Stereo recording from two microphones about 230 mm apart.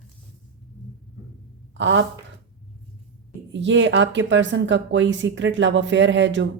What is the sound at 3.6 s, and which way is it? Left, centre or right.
Speech, right.